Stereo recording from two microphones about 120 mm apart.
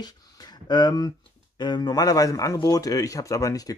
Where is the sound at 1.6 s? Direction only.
35° left (ahead or behind).